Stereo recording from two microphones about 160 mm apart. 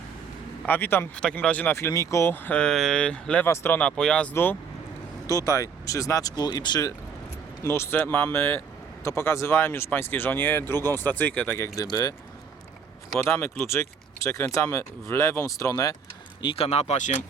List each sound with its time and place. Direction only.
0.6 s speech: 10° left (ahead or behind)
7.6 s speech: 15° left (ahead or behind)
13.1 s speech: 15° left (ahead or behind)
16.4 s speech: 35° left (ahead or behind)